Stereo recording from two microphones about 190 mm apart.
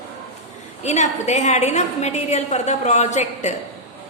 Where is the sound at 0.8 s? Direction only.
35° left (ahead or behind).